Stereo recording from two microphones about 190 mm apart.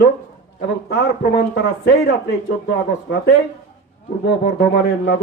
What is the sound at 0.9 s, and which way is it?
Speech, 65° left (ahead or behind).